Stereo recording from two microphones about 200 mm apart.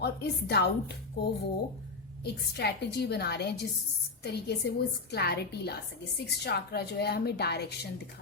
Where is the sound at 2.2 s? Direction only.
55° left (ahead or behind).